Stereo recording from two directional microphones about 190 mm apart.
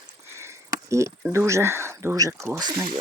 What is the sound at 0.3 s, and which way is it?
Sniff, 15° right (ahead or behind).